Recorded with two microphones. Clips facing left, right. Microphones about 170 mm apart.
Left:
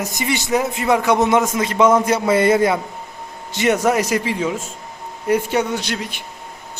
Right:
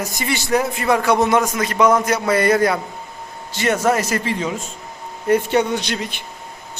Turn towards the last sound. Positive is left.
turn(degrees=5)  # may be behind; listen again after turning